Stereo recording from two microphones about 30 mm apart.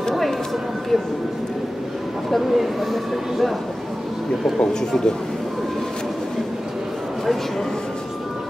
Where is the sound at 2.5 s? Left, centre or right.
Centre.